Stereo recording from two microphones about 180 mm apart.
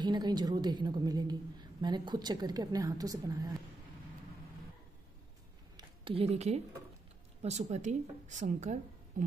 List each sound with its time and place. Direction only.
0.0 s a woman's voice: 25° right (ahead or behind)
5.8 s speech: 30° right (ahead or behind)
9.1 s a sound: 45° right (ahead or behind)